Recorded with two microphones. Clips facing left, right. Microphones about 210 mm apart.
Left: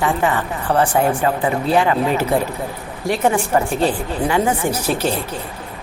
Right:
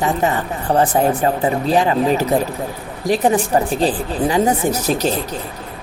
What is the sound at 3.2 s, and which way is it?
Speech, 20° right (ahead or behind).